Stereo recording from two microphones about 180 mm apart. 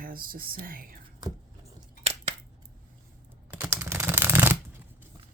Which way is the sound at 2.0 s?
35° right (ahead or behind).